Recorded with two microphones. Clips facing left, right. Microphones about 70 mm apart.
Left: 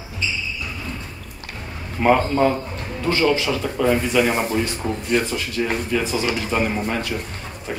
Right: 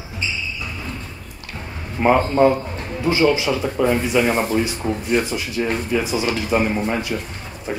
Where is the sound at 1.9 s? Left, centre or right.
Centre.